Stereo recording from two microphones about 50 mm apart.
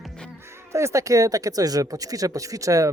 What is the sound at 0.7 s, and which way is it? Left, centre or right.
Speech, right.